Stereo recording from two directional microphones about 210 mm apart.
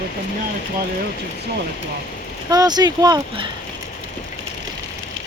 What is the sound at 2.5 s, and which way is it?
Speech, 20° right (ahead or behind).